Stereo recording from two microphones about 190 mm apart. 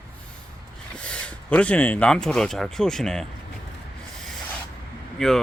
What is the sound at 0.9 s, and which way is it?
Speech, 5° left (ahead or behind).